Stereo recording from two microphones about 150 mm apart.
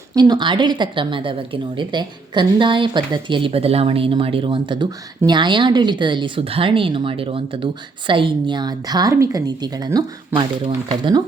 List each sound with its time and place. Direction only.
0.1 s a woman's voice: 25° right (ahead or behind)